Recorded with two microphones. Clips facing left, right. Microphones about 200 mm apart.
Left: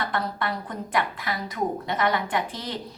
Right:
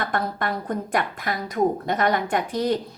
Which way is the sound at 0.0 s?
45° right (ahead or behind).